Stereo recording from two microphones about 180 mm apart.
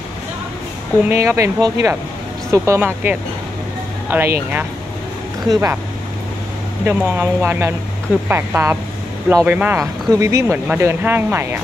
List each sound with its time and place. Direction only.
1.0 s speech: 15° right (ahead or behind)
5.5 s speech: 15° right (ahead or behind)
6.8 s speech: 10° right (ahead or behind)